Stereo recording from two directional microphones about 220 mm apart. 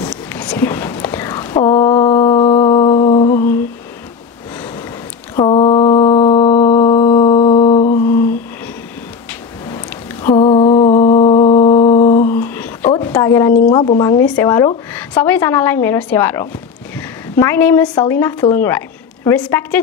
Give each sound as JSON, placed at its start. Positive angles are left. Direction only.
{"t": 0.1, "sound": "whispering", "side_deg": 5}
{"t": 1.6, "sound": "mantra", "side_deg": 20}
{"t": 3.3, "sound": "humming", "side_deg": 10}
{"t": 5.3, "sound": "mantra", "side_deg": 20}
{"t": 7.9, "sound": "humming", "side_deg": 10}
{"t": 9.3, "sound": "a sound", "side_deg": 10}
{"t": 10.3, "sound": "mantra", "side_deg": 25}
{"t": 12.3, "sound": "a sound", "side_deg": 10}
{"t": 13.7, "sound": "a woman's voice", "side_deg": 20}